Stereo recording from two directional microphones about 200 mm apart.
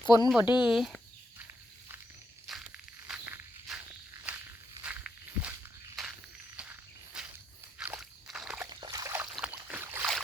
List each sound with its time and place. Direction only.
0.0 s speech: 20° left (ahead or behind)
0.3 s speech: 5° right (ahead or behind)
2.5 s walk: centre (ahead or behind)
4.8 s walk: 5° right (ahead or behind)
6.6 s walk: 5° right (ahead or behind)
7.8 s slosh: 5° right (ahead or behind)
8.7 s splash: 20° right (ahead or behind)
9.3 s boat: 5° right (ahead or behind)